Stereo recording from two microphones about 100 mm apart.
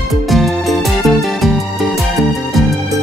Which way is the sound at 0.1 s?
Centre (ahead or behind).